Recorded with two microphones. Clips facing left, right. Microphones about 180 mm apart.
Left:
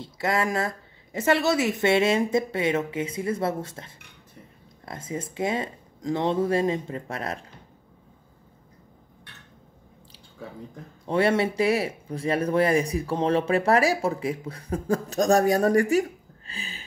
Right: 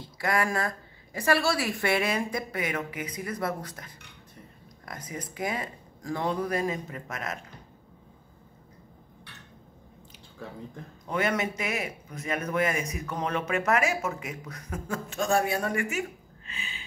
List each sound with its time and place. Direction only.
0.0 s a woman's voice: 25° left (ahead or behind)
11.1 s speech: 30° left (ahead or behind)